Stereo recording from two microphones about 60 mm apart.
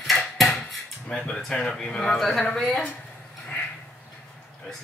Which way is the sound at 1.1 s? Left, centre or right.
Centre.